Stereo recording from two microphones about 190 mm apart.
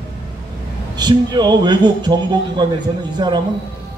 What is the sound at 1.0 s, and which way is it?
A man's voice, 20° right (ahead or behind).